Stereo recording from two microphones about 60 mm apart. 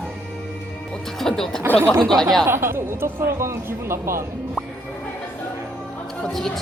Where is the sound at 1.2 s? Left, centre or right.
Centre.